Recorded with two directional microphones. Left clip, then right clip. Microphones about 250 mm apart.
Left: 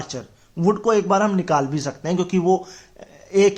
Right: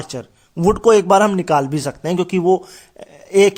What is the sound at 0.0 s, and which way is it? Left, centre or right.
Speech, right.